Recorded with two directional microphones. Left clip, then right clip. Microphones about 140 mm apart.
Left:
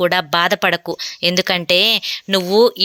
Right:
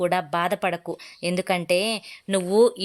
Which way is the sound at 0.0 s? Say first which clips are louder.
Left 8 dB; 20° left (ahead or behind).